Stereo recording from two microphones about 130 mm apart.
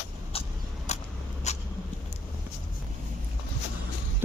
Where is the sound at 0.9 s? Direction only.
60° left (ahead or behind).